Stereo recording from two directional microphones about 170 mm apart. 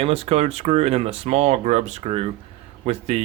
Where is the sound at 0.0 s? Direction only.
35° right (ahead or behind).